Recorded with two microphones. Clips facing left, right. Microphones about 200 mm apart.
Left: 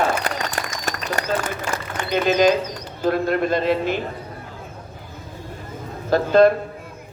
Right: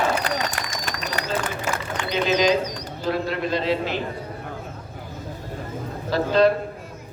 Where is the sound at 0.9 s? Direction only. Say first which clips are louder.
Left 4 dB; 45° left (ahead or behind).